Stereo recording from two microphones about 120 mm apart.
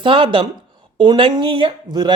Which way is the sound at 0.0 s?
45° right (ahead or behind).